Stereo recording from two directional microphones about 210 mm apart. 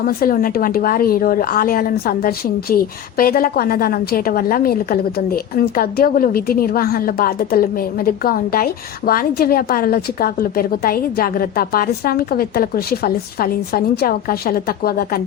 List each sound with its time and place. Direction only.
0.1 s a woman's voice: 45° left (ahead or behind)